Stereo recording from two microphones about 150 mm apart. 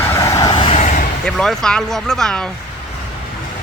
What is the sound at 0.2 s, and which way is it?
Vehicle, 20° left (ahead or behind).